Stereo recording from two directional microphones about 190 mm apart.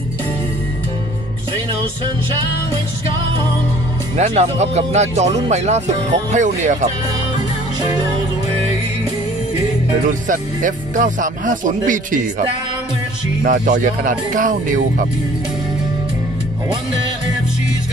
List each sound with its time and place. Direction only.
4.2 s speech: 35° right (ahead or behind)
10.2 s speech: 45° right (ahead or behind)